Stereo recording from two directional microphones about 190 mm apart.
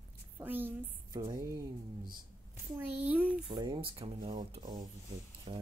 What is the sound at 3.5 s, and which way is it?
Speech, 25° right (ahead or behind).